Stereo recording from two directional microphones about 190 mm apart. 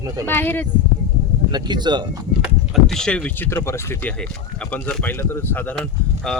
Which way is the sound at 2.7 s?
Centre (ahead or behind).